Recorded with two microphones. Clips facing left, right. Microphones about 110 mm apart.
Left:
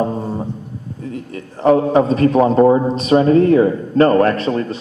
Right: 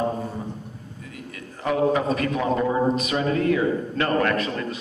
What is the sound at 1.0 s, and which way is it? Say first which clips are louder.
A man's voice: left 11 dB; 35° left (ahead or behind).